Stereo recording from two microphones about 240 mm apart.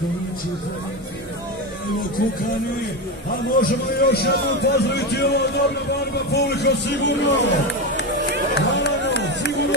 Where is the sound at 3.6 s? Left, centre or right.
Left.